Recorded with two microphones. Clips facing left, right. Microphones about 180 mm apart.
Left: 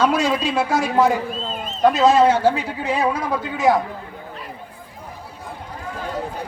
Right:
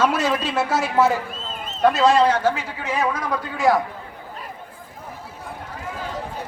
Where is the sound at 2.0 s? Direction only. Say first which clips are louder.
Left 2 dB; centre (ahead or behind).